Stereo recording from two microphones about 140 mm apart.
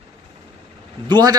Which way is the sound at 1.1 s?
30° right (ahead or behind).